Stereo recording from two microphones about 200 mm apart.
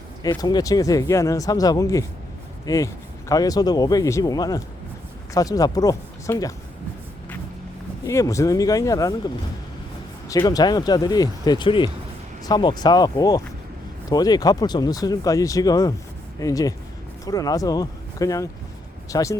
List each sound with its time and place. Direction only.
0.2 s a man's voice: 20° left (ahead or behind)
8.0 s a man's voice: 15° left (ahead or behind)